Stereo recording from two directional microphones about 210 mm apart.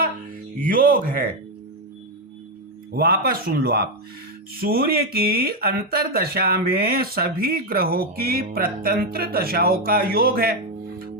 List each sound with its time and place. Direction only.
0.5 s speech: 40° right (ahead or behind)
2.9 s speech: 45° right (ahead or behind)